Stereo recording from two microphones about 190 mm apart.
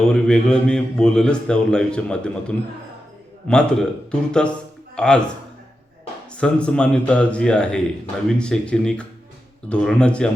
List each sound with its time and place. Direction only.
0.0 s a man's voice: 5° left (ahead or behind)
6.3 s a man's voice: 5° left (ahead or behind)